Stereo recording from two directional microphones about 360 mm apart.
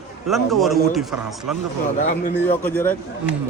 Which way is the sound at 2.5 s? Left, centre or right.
Centre.